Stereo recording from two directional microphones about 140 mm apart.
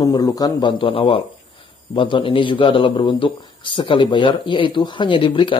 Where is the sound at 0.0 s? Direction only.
25° left (ahead or behind).